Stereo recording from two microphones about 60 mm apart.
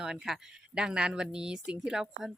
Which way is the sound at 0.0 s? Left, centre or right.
Centre.